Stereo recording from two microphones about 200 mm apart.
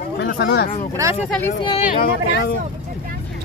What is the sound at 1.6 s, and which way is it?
Speech, 25° left (ahead or behind).